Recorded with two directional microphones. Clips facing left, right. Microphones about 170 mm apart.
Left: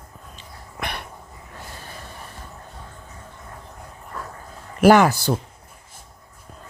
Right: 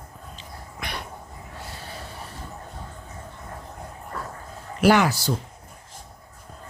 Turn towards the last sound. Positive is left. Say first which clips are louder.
# left 5 dB
turn(degrees=55)  # may be behind; listen again after turning